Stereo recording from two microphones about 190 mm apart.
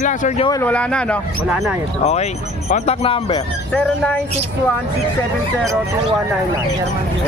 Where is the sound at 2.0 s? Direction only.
35° left (ahead or behind).